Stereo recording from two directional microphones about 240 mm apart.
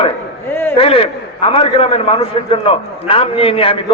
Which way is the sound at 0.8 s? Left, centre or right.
Left.